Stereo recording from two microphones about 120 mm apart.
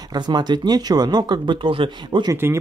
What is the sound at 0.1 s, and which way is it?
Speech, 35° right (ahead or behind).